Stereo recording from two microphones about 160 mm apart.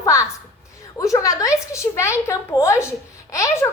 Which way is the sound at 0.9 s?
20° left (ahead or behind).